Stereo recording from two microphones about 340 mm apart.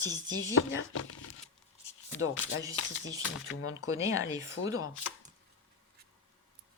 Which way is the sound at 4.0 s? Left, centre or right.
Centre.